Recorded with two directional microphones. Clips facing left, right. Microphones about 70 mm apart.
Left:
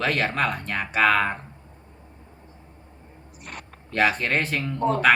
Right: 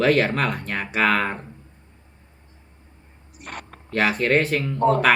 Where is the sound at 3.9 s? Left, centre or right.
Centre.